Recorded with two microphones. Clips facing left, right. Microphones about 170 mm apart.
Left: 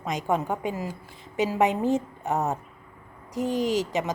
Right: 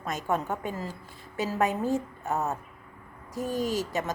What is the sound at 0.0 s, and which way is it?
A woman's voice, 15° left (ahead or behind).